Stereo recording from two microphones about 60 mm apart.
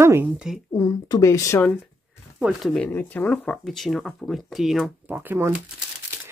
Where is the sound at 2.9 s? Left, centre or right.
Left.